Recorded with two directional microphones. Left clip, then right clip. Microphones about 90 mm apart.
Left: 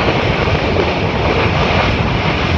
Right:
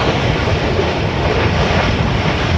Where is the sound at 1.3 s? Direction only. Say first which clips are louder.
Left 1 dB; 45° right (ahead or behind).